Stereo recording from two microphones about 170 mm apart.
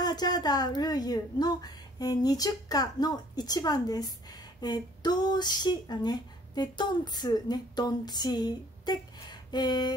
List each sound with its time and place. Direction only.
0.0 s speech: 25° left (ahead or behind)